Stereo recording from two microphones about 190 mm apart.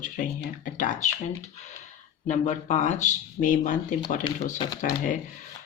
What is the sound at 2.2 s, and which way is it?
Speech, 40° left (ahead or behind).